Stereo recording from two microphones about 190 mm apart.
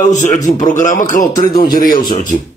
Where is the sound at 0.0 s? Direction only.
40° left (ahead or behind).